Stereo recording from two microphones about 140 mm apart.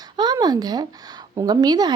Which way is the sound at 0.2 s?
30° right (ahead or behind).